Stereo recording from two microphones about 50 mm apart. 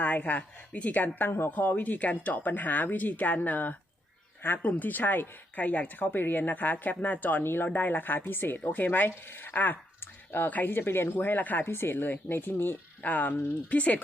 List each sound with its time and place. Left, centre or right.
0.0 s speech: left
5.6 s speech: left
7.8 s speech: left
11.1 s speech: left
13.0 s speech: left